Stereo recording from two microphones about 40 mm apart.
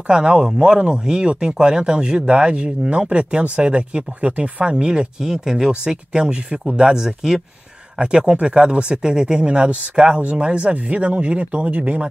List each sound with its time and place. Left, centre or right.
0.0 s speech: right
4.6 s speech: right